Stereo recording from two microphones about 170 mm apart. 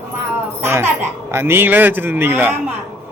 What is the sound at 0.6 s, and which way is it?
A man's voice, 15° right (ahead or behind).